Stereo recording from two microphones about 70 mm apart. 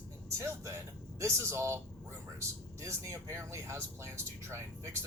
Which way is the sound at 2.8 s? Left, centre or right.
Right.